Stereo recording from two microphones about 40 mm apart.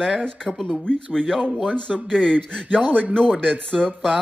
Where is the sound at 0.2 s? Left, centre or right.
Centre.